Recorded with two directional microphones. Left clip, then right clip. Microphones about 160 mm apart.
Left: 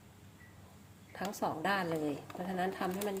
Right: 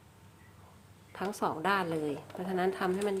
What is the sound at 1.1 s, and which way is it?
Speech, 20° right (ahead or behind).